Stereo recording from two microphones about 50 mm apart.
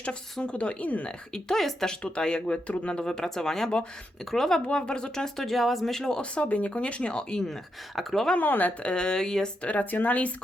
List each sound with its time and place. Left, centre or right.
0.4 s a woman's voice: left
1.3 s speech: centre
8.4 s a woman's voice: left
8.8 s speech: centre
9.6 s a woman's voice: left